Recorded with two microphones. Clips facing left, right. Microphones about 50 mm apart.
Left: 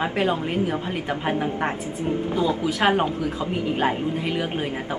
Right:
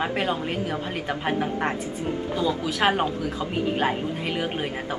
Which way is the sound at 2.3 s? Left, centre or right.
Left.